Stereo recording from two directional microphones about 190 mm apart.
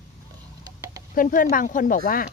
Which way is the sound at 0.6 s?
15° right (ahead or behind).